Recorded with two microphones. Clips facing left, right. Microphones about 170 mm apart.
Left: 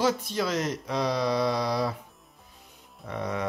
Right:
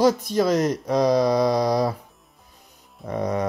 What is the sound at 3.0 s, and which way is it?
Speech, 40° right (ahead or behind).